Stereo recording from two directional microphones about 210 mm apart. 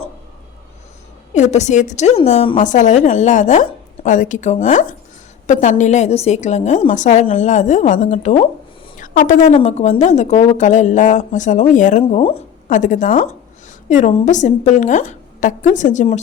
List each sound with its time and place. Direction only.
1.3 s a woman's voice: 35° left (ahead or behind)